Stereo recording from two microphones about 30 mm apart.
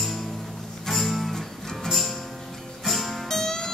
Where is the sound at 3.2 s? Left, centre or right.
Centre.